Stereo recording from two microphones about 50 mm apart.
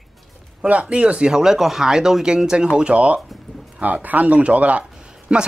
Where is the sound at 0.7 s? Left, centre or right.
Right.